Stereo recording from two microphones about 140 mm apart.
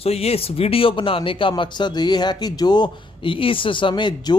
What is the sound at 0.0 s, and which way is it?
Speech, 45° left (ahead or behind).